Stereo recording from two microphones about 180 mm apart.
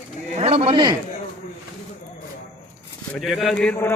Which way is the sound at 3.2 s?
Centre (ahead or behind).